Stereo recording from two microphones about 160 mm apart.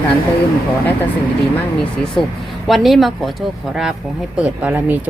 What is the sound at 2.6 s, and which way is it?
A woman's voice, centre (ahead or behind).